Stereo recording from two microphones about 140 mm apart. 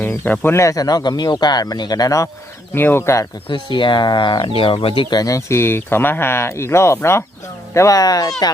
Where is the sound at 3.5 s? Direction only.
35° left (ahead or behind).